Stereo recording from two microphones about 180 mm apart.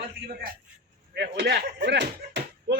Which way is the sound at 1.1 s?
70° right (ahead or behind).